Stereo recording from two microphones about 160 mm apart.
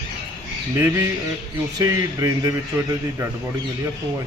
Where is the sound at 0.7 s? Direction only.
20° right (ahead or behind).